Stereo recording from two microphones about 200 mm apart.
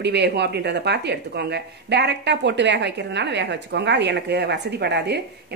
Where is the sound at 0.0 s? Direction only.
60° right (ahead or behind).